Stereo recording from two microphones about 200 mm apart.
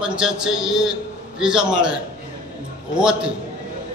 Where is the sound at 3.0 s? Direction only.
5° right (ahead or behind).